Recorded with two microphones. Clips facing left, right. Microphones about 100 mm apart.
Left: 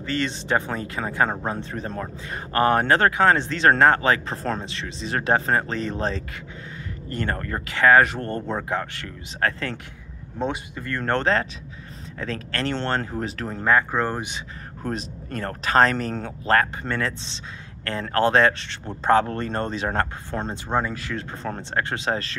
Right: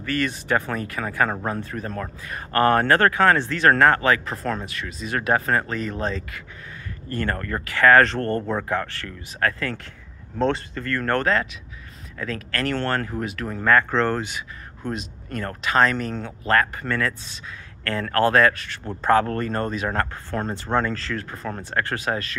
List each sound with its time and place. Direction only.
0.0 s speech: 25° left (ahead or behind)
10.4 s speech: 15° left (ahead or behind); by 13.7 s 30° left (ahead or behind)
13.7 s speech: 15° left (ahead or behind)
14.8 s speech: 35° left (ahead or behind)